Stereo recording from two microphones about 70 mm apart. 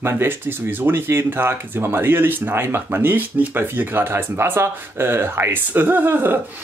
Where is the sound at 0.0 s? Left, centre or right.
Right.